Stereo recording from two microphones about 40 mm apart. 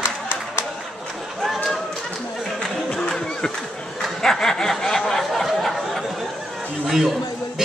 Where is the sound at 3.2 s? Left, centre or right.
Centre.